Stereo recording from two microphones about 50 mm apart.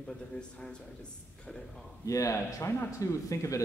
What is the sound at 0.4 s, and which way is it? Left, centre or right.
Speech, centre.